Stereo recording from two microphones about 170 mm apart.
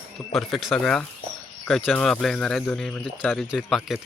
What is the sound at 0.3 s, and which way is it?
Speech, centre (ahead or behind).